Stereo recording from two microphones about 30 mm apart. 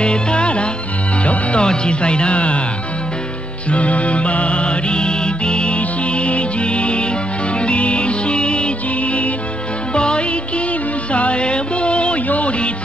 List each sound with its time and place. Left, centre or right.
0.0 s music: left
1.6 s speech: left
3.7 s music: left
9.9 s music: left
12.3 s music: left